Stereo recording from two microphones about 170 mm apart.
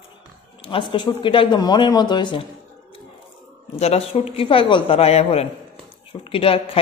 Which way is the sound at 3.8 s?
35° left (ahead or behind).